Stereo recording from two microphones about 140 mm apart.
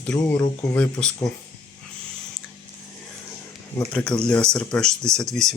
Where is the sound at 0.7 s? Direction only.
5° left (ahead or behind).